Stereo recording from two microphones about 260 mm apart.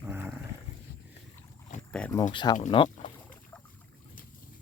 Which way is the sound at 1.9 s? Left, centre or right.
Centre.